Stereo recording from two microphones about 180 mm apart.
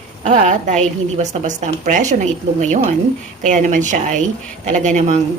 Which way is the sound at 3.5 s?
45° right (ahead or behind).